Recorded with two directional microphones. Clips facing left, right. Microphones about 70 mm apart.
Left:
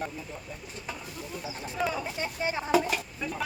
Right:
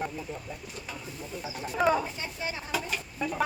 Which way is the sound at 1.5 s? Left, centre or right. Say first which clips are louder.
Right 5 dB; right.